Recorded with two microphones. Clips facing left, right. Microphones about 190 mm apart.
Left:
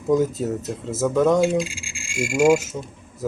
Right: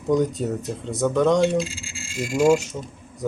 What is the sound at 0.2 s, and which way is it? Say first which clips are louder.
Speech: left 1 dB; centre (ahead or behind).